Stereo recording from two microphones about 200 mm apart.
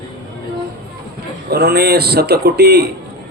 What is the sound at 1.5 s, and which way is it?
Speech, 50° right (ahead or behind).